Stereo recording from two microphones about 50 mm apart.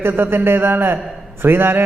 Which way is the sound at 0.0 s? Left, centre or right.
Right.